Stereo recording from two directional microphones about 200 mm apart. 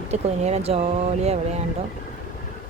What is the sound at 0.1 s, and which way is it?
A woman's voice, 35° right (ahead or behind).